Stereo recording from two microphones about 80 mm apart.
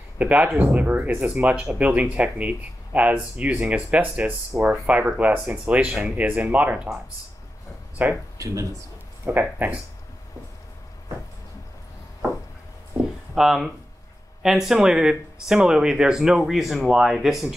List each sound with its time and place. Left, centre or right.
0.2 s speech: centre
8.0 s speech: centre
8.4 s speech: right
9.2 s speech: right
13.3 s speech: centre